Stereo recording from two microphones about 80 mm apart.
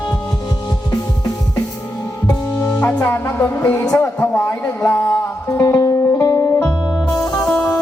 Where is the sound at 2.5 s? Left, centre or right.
Left.